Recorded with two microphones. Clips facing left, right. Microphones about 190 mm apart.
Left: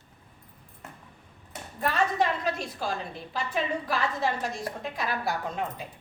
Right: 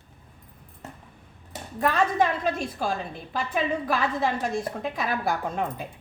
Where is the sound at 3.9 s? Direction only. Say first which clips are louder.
Right 2 dB; 55° right (ahead or behind).